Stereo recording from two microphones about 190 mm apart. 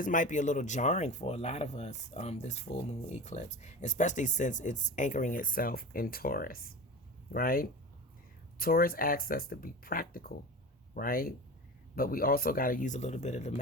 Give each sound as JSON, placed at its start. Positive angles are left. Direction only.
{"t": 0.0, "sound": "speech", "side_deg": 45}